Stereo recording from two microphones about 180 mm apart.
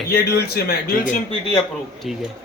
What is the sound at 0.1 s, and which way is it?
Speech, 60° left (ahead or behind).